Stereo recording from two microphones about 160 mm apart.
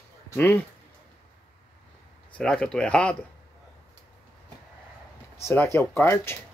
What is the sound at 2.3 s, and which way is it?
Speech, 5° left (ahead or behind).